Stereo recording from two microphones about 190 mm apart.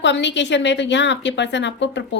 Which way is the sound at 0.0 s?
70° left (ahead or behind).